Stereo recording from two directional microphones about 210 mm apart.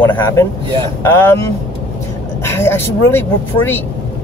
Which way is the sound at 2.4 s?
10° left (ahead or behind).